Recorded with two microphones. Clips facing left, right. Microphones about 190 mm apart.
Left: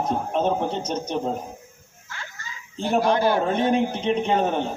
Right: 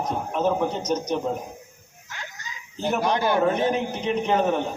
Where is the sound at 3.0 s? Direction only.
20° right (ahead or behind).